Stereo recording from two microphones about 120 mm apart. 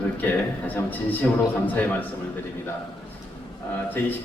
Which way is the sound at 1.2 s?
15° left (ahead or behind).